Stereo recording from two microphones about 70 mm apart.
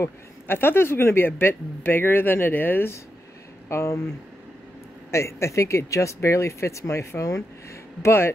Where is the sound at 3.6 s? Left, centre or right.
Left.